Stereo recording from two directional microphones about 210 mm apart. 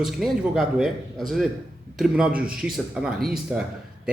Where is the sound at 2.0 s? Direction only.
5° right (ahead or behind).